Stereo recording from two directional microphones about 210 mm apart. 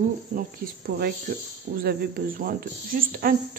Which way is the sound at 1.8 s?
40° right (ahead or behind).